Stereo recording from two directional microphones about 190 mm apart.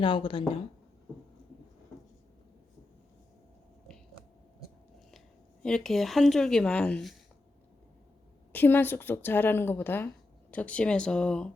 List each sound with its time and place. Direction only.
0.0 s speech: 25° left (ahead or behind)
5.6 s speech: 5° left (ahead or behind)
8.5 s a woman's voice: 10° left (ahead or behind)